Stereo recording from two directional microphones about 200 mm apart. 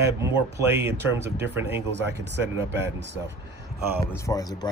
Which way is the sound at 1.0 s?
10° right (ahead or behind).